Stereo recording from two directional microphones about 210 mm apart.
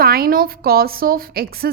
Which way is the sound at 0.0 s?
45° right (ahead or behind).